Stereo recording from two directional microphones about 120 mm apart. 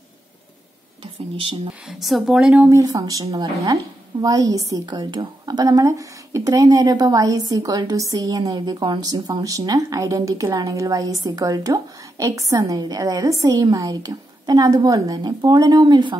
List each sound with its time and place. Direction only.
1.3 s speech: 45° right (ahead or behind)
1.9 s speech: centre (ahead or behind)
2.6 s speech: 25° right (ahead or behind)